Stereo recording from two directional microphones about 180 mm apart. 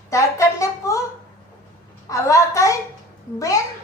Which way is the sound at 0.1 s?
15° left (ahead or behind).